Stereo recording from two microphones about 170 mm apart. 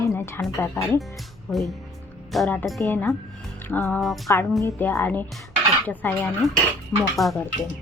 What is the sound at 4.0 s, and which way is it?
Speech, centre (ahead or behind).